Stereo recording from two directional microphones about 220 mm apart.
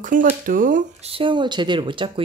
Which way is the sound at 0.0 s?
35° right (ahead or behind).